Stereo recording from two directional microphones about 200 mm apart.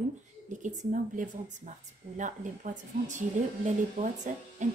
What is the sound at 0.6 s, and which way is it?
A woman's voice, 40° right (ahead or behind).